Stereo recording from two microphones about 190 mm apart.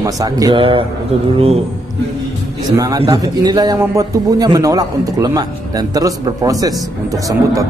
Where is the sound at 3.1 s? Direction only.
20° right (ahead or behind).